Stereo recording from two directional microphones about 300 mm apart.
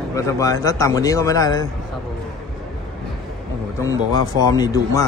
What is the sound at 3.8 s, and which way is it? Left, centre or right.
Speech, centre.